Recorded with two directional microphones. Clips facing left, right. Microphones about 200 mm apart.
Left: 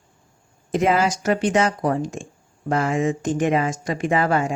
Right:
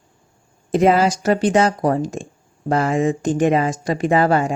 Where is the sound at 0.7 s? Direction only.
35° right (ahead or behind).